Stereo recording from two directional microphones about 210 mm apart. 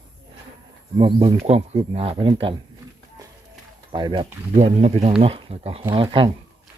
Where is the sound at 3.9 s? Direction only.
20° right (ahead or behind).